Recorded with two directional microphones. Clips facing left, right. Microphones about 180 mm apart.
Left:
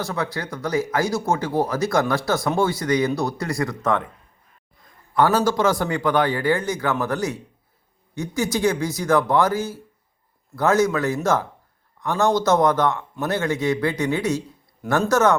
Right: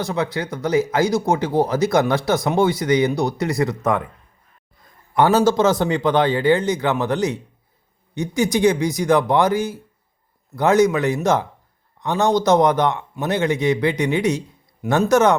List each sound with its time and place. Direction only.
0.0 s speech: 20° right (ahead or behind)
5.1 s speech: 20° right (ahead or behind)